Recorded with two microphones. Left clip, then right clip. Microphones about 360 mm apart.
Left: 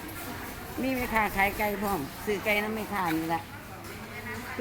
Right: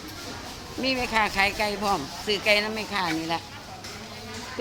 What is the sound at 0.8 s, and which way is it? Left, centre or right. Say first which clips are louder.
Speech: right 4 dB; centre.